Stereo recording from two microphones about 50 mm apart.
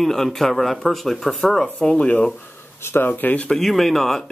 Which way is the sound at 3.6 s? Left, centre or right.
Centre.